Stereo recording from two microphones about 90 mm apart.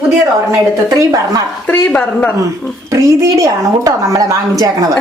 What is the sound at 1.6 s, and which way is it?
Speech, 20° left (ahead or behind).